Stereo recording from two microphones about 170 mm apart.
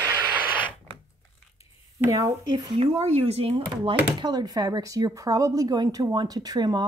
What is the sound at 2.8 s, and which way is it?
Speech, 35° right (ahead or behind).